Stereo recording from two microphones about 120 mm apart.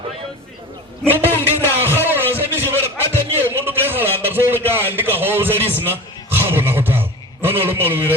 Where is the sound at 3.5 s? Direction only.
20° right (ahead or behind).